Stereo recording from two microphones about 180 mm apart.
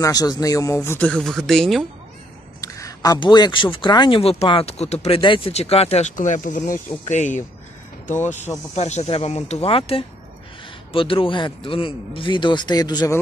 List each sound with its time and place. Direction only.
0.0 s speech: 20° left (ahead or behind); by 1.9 s centre (ahead or behind)
2.6 s speech: 20° left (ahead or behind)